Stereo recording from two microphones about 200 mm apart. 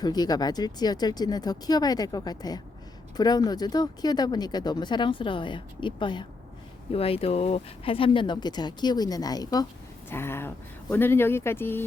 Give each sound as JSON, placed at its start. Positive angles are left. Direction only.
{"t": 0.0, "sound": "speech", "side_deg": 20}